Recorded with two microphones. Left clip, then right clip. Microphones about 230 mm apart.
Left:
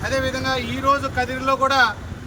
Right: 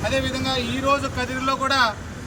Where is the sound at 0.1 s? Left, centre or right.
Centre.